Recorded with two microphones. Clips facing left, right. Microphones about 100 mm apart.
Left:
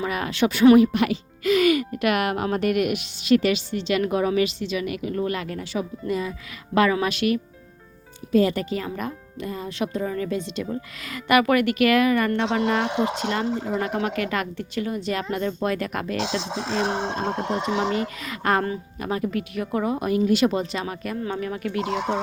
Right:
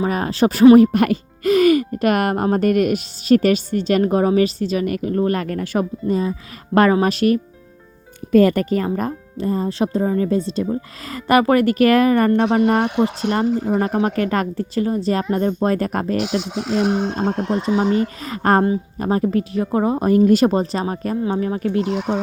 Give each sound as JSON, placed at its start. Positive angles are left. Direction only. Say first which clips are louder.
{"t": 0.0, "sound": "speech", "louder": "right 5 dB", "side_deg": -35}
{"t": 0.9, "sound": "speech", "louder": "right 5 dB", "side_deg": -45}
{"t": 6.1, "sound": "speech", "louder": "right 6 dB", "side_deg": -35}
{"t": 8.3, "sound": "speech", "louder": "right 6 dB", "side_deg": -50}
{"t": 8.9, "sound": "speech", "louder": "right 8 dB", "side_deg": -35}
{"t": 12.9, "sound": "speech", "louder": "right 5 dB", "side_deg": 25}
{"t": 13.7, "sound": "speech", "louder": "right 6 dB", "side_deg": -35}
{"t": 16.1, "sound": "speech", "louder": "right 5 dB", "side_deg": 30}
{"t": 18.2, "sound": "speech", "louder": "right 6 dB", "side_deg": -35}